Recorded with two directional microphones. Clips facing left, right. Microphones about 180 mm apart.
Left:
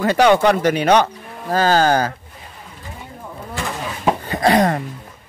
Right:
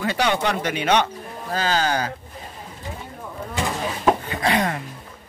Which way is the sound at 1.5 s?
45° left (ahead or behind).